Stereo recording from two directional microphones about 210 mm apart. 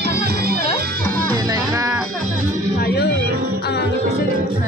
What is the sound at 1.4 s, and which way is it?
Music, 15° right (ahead or behind).